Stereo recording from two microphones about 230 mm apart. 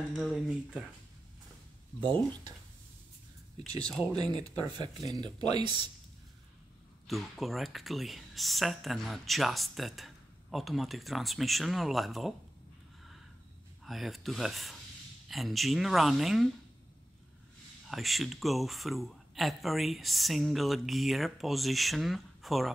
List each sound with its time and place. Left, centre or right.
0.1 s speech: centre
4.0 s speech: centre
7.1 s speech: centre
13.8 s speech: centre
17.8 s speech: centre